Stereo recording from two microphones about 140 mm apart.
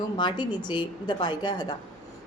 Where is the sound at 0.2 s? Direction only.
35° left (ahead or behind).